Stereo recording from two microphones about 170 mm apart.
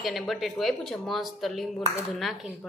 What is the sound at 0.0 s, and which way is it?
Speech, centre (ahead or behind).